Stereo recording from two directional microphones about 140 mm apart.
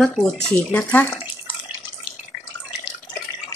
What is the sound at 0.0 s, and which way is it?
Speech, 5° left (ahead or behind).